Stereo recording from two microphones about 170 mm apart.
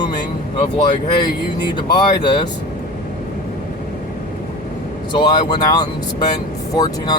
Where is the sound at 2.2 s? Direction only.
25° left (ahead or behind).